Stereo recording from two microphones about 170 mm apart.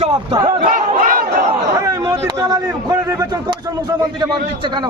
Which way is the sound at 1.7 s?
20° right (ahead or behind).